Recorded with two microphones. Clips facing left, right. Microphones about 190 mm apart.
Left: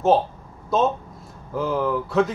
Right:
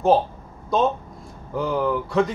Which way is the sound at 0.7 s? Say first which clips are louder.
Even; centre (ahead or behind).